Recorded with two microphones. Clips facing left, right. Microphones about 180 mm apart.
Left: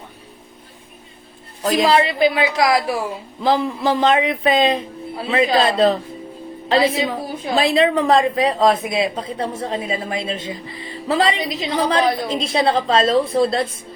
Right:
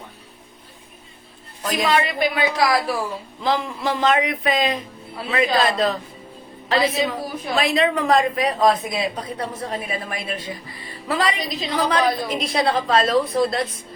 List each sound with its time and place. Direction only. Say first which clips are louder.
1.8 s a woman's voice: left 4 dB; 30° left (ahead or behind)